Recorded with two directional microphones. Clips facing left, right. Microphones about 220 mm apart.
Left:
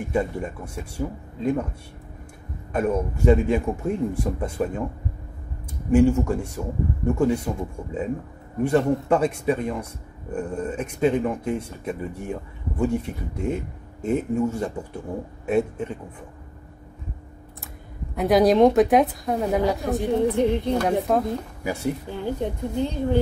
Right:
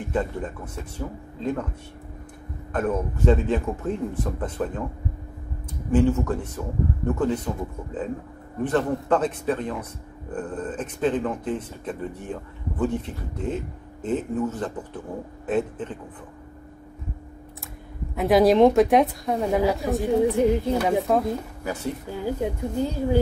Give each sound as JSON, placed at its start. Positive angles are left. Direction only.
{"t": 0.1, "sound": "a man's voice", "side_deg": 10}
{"t": 2.7, "sound": "a man's voice", "side_deg": 10}
{"t": 5.9, "sound": "a man's voice", "side_deg": 10}
{"t": 18.1, "sound": "a woman's voice", "side_deg": 0}
{"t": 21.6, "sound": "a man's voice", "side_deg": 10}
{"t": 22.1, "sound": "speech", "side_deg": -5}